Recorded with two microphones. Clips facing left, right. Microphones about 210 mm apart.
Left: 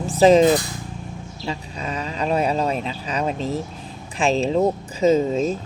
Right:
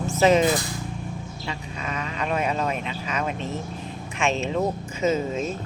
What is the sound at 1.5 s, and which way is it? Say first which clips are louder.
Speech: left 5 dB; 35° left (ahead or behind).